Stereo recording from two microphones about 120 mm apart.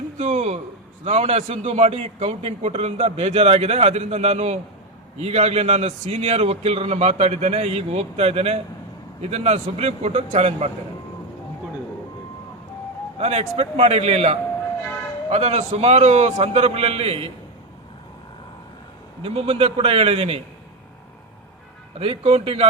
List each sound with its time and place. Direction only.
0.2 s a man's voice: 65° right (ahead or behind)
13.1 s a man's voice: 65° right (ahead or behind)
19.2 s a man's voice: 55° right (ahead or behind)
21.9 s a man's voice: 55° right (ahead or behind)